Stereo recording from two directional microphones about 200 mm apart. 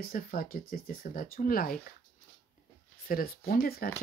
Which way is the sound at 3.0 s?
45° left (ahead or behind).